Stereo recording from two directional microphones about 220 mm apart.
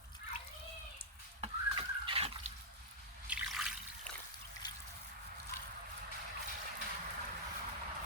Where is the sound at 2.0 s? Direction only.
25° right (ahead or behind).